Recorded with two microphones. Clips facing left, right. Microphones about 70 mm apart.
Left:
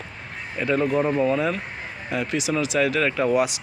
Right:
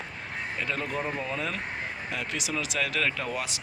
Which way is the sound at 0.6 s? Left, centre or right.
Centre.